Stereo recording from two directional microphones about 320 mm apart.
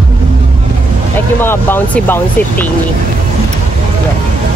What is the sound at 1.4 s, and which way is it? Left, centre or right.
Speech, centre.